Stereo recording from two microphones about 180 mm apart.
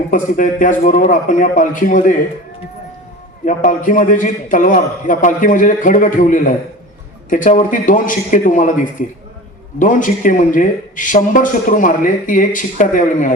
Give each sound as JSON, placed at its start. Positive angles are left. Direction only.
{"t": 0.1, "sound": "speech", "side_deg": 45}
{"t": 3.4, "sound": "speech", "side_deg": 45}